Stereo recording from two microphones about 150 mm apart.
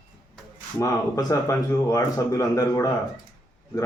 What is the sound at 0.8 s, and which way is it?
Speech, 20° left (ahead or behind).